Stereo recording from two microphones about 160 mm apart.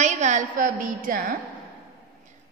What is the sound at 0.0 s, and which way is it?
A woman's voice, 45° right (ahead or behind).